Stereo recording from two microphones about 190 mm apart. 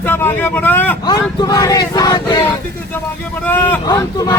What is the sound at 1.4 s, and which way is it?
Crowd, 20° left (ahead or behind).